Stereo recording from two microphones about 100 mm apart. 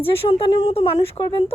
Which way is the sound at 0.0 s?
65° left (ahead or behind).